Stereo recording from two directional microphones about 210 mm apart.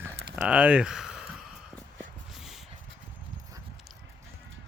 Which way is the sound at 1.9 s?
Centre (ahead or behind).